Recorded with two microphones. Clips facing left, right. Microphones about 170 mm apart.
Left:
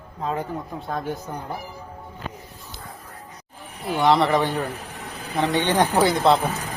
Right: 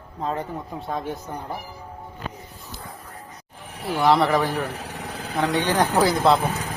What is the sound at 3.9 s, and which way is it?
Speech, centre (ahead or behind).